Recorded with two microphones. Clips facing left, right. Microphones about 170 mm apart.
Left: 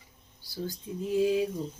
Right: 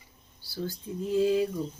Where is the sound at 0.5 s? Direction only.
15° left (ahead or behind).